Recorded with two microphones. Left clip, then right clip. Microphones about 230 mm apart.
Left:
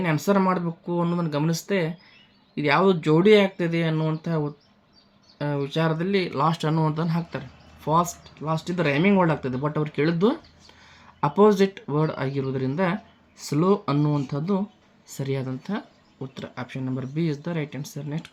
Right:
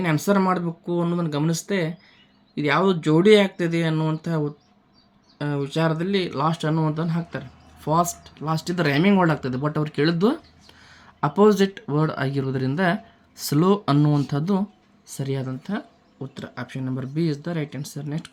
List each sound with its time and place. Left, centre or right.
0.0 s speech: centre
7.8 s speech: centre
15.0 s speech: centre